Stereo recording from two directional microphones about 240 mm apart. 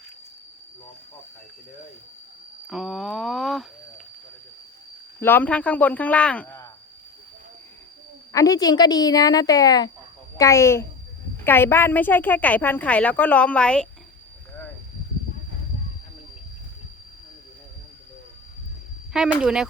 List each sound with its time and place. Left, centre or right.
2.6 s speech: centre
5.2 s speech: centre
8.3 s a woman's voice: centre
19.1 s speech: centre